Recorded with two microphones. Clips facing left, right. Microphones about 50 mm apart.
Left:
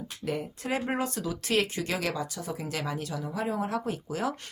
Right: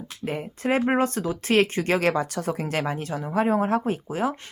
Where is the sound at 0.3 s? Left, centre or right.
Right.